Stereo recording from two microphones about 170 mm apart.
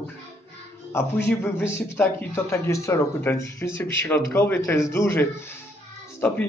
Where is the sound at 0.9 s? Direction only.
15° left (ahead or behind).